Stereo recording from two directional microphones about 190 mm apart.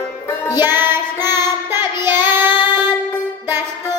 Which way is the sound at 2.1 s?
10° right (ahead or behind).